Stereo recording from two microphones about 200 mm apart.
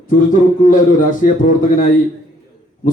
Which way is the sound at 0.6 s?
40° left (ahead or behind).